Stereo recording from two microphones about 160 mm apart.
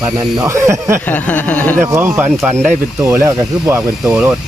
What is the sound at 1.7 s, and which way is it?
Speech, 15° right (ahead or behind).